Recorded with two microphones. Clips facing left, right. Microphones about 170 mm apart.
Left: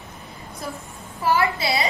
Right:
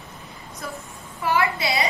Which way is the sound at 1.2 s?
35° left (ahead or behind).